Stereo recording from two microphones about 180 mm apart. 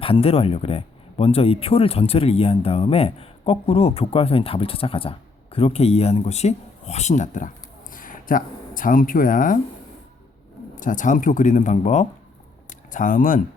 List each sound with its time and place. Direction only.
0.0 s speech: 30° left (ahead or behind); by 9.6 s 50° left (ahead or behind)
10.8 s speech: 45° left (ahead or behind)